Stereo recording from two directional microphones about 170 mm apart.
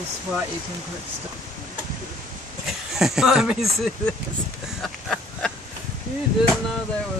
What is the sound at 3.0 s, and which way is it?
Speech, 5° right (ahead or behind).